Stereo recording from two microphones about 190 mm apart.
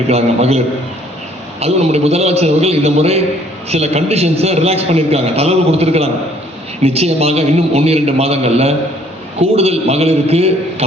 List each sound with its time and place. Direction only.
0.1 s a man's voice: 35° right (ahead or behind)